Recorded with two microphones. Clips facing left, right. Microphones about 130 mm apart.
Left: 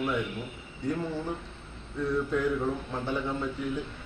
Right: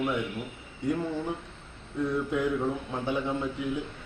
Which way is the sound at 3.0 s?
15° right (ahead or behind).